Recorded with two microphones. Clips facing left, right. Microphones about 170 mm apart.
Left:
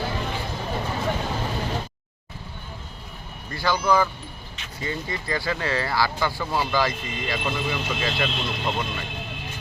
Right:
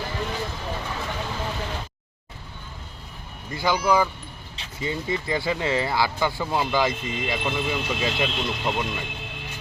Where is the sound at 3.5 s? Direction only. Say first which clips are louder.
Even; 20° right (ahead or behind).